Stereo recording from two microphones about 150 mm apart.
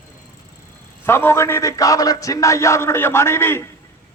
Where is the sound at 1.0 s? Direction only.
15° left (ahead or behind).